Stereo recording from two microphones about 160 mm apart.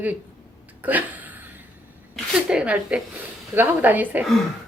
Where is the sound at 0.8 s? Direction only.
10° right (ahead or behind).